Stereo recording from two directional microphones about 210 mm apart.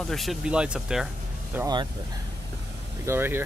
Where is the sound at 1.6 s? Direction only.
20° right (ahead or behind).